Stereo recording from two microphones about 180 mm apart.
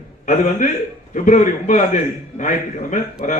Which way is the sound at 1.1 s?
45° left (ahead or behind).